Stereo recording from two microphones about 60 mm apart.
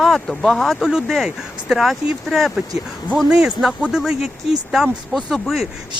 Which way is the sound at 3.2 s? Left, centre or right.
Centre.